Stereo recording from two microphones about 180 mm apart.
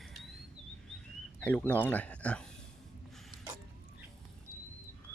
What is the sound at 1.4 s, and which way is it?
Speech, 10° left (ahead or behind).